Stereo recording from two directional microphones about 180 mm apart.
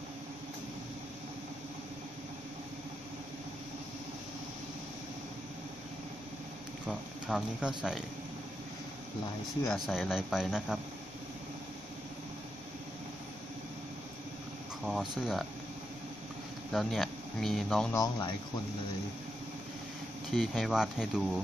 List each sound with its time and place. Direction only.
6.9 s speech: 5° right (ahead or behind)
9.7 s speech: centre (ahead or behind)
14.9 s speech: centre (ahead or behind)
16.7 s speech: centre (ahead or behind)
17.9 s speech: 25° left (ahead or behind)
20.2 s speech: centre (ahead or behind)